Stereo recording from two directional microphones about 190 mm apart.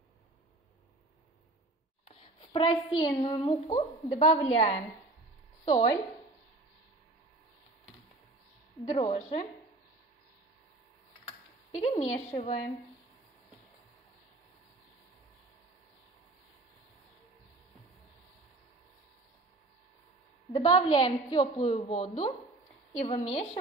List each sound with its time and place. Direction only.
2.0 s a woman's voice: 30° left (ahead or behind)
8.9 s a woman's voice: 30° left (ahead or behind)
12.0 s a woman's voice: 35° left (ahead or behind)
20.5 s a woman's voice: 20° left (ahead or behind)